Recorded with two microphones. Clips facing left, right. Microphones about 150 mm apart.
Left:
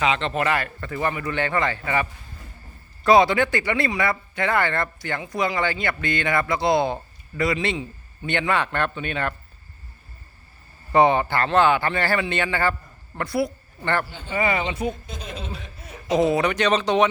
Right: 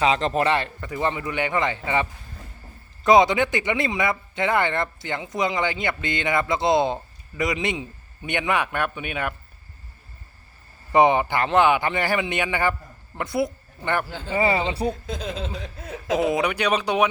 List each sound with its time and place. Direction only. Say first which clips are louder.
0.0 s speech: right 2 dB; 35° right (ahead or behind); by 9.3 s 10° right (ahead or behind)
10.9 s a man's voice: even; 15° right (ahead or behind)
14.3 s speech: right 2 dB; 30° right (ahead or behind)
15.4 s speech: right 4 dB; 90° right
16.1 s a man's voice: left 2 dB; 10° right (ahead or behind)